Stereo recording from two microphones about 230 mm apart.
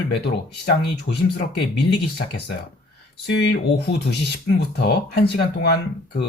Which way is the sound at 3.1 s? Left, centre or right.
Left.